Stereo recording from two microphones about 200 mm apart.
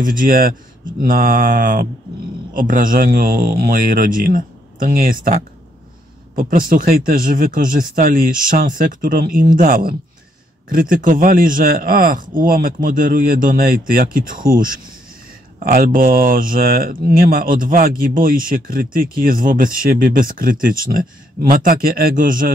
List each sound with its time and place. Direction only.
0.0 s speech: 45° right (ahead or behind)